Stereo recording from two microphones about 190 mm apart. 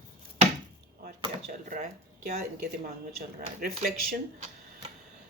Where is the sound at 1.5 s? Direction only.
40° right (ahead or behind).